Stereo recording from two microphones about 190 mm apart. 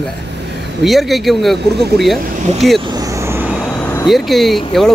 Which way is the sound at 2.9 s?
20° right (ahead or behind).